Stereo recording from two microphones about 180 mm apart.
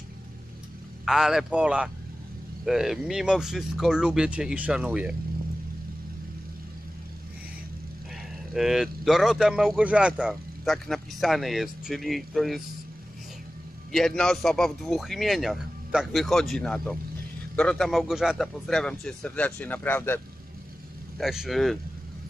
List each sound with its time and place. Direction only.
1.0 s speech: centre (ahead or behind)
8.5 s speech: centre (ahead or behind)
13.9 s speech: 5° left (ahead or behind)
21.2 s speech: centre (ahead or behind)